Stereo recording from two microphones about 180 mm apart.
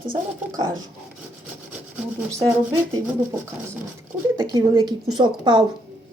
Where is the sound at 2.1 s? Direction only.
20° right (ahead or behind).